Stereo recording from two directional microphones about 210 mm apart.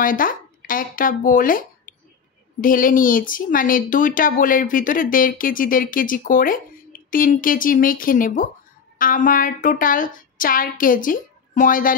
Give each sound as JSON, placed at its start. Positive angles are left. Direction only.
{"t": 0.0, "sound": "speech", "side_deg": 40}